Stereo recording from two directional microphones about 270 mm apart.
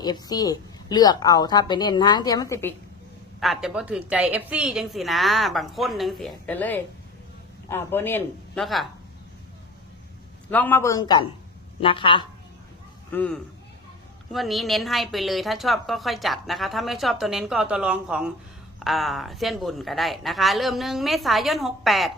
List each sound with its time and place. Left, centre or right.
0.0 s speech: centre
3.4 s a woman's voice: centre
10.5 s speech: centre
13.1 s a woman's voice: centre